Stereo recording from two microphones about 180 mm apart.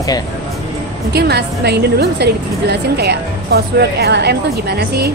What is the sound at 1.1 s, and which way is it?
A woman's voice, 65° right (ahead or behind).